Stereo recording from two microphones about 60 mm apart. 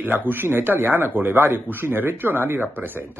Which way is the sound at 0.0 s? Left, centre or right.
Right.